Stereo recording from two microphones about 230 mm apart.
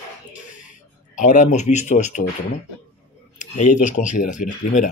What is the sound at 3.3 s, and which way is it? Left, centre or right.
Speech, left.